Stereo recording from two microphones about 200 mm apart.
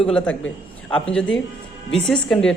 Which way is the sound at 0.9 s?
5° left (ahead or behind).